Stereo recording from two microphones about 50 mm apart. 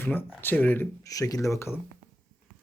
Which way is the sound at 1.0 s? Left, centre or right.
Left.